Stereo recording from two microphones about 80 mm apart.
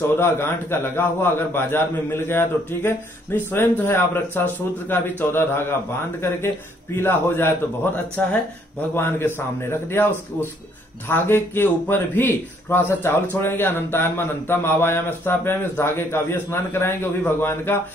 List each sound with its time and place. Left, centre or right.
0.2 s speech: left
7.0 s a man's voice: left
11.1 s speech: left